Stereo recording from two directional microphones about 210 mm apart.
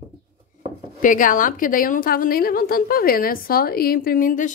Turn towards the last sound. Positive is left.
turn(degrees=40)  # may be behind; listen again after turning